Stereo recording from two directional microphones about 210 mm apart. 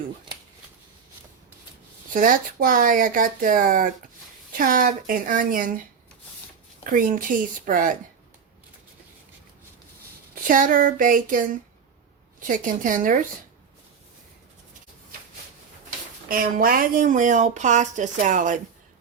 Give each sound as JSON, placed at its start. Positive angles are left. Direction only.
{"t": 2.1, "sound": "speech", "side_deg": -40}
{"t": 6.8, "sound": "speech", "side_deg": -40}
{"t": 10.4, "sound": "speech", "side_deg": -40}
{"t": 16.3, "sound": "speech", "side_deg": -45}